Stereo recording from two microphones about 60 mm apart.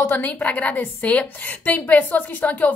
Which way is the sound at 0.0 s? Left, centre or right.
Left.